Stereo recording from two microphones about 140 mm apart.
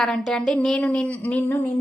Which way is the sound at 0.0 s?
5° left (ahead or behind).